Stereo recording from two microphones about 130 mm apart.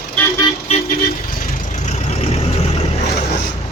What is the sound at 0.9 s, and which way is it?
Vehicle, 90° left.